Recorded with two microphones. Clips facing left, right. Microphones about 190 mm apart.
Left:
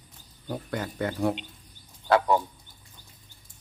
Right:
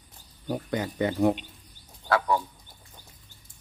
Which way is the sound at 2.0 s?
20° left (ahead or behind).